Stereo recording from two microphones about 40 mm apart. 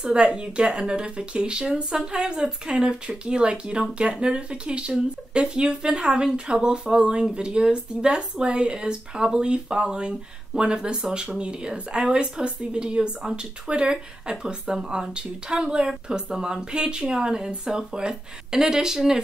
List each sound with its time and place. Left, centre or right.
0.0 s speech: right